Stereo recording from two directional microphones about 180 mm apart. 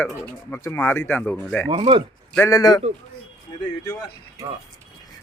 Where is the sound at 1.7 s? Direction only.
30° right (ahead or behind).